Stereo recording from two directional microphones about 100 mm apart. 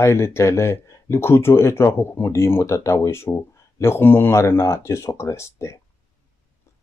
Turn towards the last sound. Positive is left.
turn(degrees=30)  # may be behind; listen again after turning